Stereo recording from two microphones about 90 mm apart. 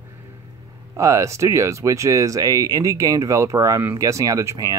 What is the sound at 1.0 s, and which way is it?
Speech, 35° right (ahead or behind).